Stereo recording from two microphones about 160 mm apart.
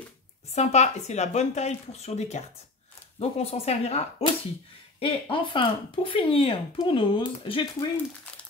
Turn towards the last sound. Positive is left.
turn(degrees=30)  # may be behind; listen again after turning